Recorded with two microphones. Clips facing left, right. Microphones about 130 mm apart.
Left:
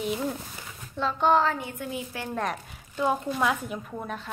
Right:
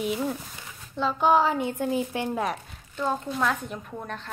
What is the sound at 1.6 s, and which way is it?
Speech, 35° right (ahead or behind).